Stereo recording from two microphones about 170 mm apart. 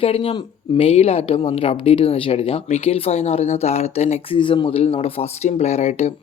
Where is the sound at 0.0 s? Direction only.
35° left (ahead or behind).